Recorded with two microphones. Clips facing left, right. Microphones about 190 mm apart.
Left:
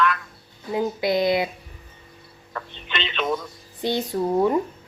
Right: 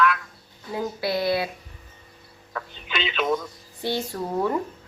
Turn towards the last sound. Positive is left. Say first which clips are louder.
# left 5 dB
turn(degrees=20)  # may be behind; listen again after turning